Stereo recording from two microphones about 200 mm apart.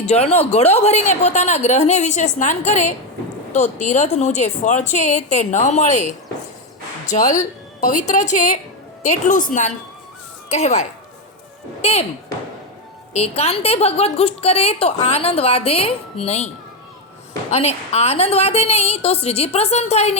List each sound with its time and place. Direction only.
0.1 s a woman's voice: 30° left (ahead or behind)
10.5 s a woman's voice: 35° left (ahead or behind)
13.1 s a woman's voice: 30° left (ahead or behind)
17.5 s a woman's voice: 30° left (ahead or behind)